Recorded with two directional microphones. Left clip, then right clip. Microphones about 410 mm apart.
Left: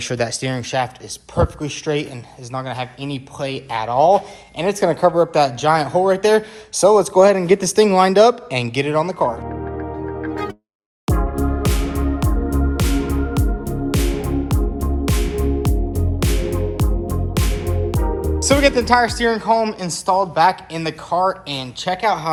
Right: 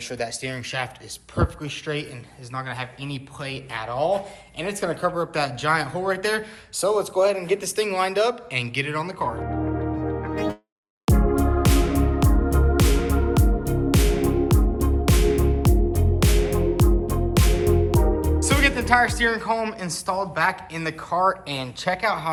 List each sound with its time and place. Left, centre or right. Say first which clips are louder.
0.0 s speech: left 7 dB; centre
11.0 s music: even; centre